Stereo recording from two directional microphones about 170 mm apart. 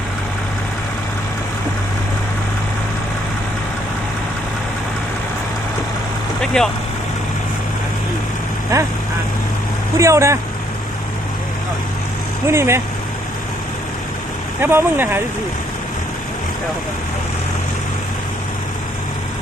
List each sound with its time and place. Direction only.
6.4 s vehicle: 5° left (ahead or behind)
8.7 s speech: 20° right (ahead or behind)
10.0 s speech: 15° right (ahead or behind)
12.5 s speech: 15° right (ahead or behind)
14.6 s speech: 10° right (ahead or behind)